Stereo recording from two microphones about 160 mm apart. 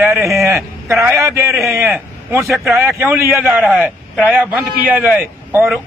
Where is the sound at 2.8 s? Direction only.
15° right (ahead or behind).